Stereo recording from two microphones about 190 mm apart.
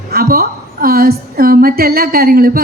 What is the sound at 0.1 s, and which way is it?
A woman's voice, 55° right (ahead or behind).